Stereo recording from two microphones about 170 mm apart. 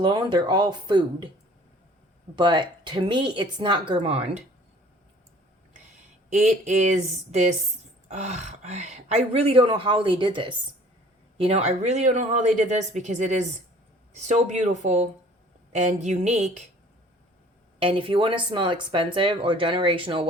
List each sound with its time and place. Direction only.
0.0 s a woman's voice: 25° right (ahead or behind)
2.3 s a woman's voice: 25° right (ahead or behind)
6.3 s speech: 45° right (ahead or behind)
17.7 s speech: 30° right (ahead or behind)